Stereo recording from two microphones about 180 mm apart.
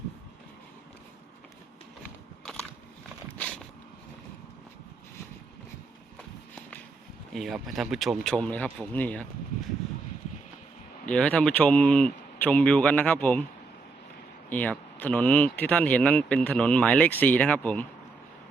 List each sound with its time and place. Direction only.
2.4 s biting: 5° left (ahead or behind)
3.3 s a sound: 5° left (ahead or behind)
7.3 s speech: centre (ahead or behind)
11.0 s speech: 5° left (ahead or behind)
14.5 s speech: 10° left (ahead or behind)